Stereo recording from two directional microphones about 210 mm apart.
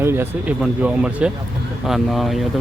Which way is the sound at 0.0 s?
10° right (ahead or behind).